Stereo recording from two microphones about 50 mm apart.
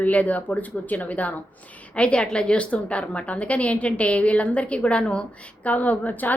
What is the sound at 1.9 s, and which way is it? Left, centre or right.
A woman's voice, left.